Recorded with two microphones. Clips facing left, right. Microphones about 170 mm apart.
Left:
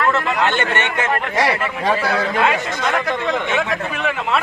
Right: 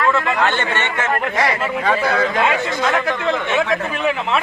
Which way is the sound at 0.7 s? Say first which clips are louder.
Left 1 dB; 15° left (ahead or behind).